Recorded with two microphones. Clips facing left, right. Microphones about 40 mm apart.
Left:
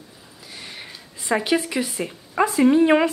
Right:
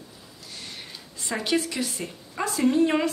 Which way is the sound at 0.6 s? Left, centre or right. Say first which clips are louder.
Left 3 dB; centre.